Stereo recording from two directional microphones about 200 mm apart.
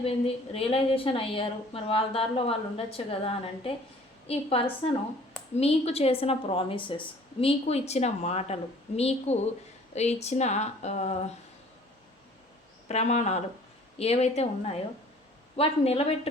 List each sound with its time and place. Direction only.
0.0 s a woman's voice: 30° left (ahead or behind)
12.9 s a woman's voice: 35° left (ahead or behind)